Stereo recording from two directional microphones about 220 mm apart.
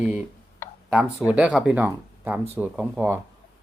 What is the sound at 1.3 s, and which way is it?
Speech, 5° right (ahead or behind).